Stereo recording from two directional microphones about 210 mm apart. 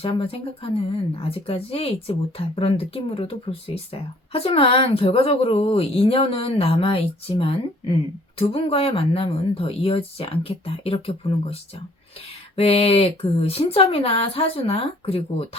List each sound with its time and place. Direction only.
0.0 s speech: 25° left (ahead or behind)